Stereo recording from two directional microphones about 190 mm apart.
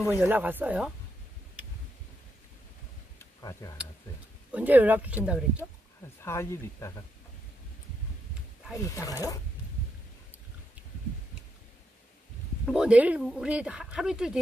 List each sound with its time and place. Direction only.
0.0 s speech: 15° left (ahead or behind)
0.3 s speech: 10° right (ahead or behind)
3.2 s a sound: 15° left (ahead or behind)
4.5 s speech: 10° right (ahead or behind)
6.2 s speech: 15° left (ahead or behind)
8.7 s speech: 15° left (ahead or behind)
12.6 s speech: 5° right (ahead or behind)